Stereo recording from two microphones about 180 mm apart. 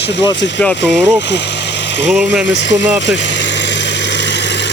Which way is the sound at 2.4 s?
85° left.